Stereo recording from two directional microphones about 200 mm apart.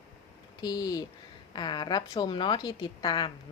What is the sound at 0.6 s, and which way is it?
A woman's voice, 20° left (ahead or behind).